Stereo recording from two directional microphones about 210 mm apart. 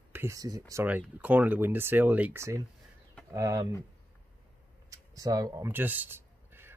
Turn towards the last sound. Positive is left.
turn(degrees=-10)  # may be behind; listen again after turning